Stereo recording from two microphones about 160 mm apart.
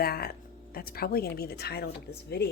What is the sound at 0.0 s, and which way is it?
A woman's voice, 70° left (ahead or behind).